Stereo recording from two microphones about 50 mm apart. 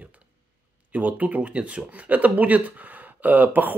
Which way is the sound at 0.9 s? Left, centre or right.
Right.